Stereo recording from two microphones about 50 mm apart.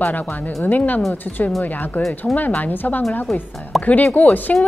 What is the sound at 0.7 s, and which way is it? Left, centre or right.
Speech, left.